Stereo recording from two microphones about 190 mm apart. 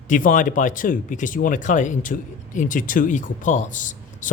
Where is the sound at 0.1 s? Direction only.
45° left (ahead or behind).